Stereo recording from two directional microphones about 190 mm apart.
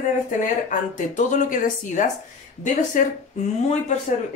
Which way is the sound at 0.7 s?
40° left (ahead or behind).